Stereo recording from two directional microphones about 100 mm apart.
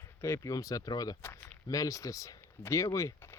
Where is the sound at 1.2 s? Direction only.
20° left (ahead or behind).